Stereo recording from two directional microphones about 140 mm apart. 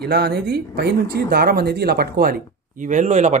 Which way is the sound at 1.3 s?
90° right.